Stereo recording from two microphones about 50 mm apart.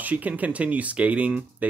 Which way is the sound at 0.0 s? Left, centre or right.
Right.